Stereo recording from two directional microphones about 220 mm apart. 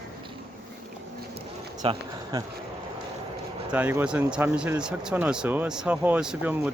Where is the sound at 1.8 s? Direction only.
20° right (ahead or behind).